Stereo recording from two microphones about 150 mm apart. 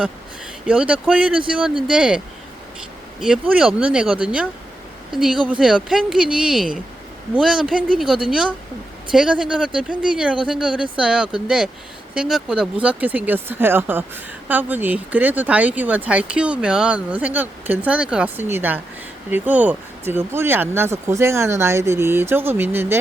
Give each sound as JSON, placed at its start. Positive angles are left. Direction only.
{"t": 0.7, "sound": "speech", "side_deg": -10}